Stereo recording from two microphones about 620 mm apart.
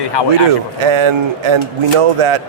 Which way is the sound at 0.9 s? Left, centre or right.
Right.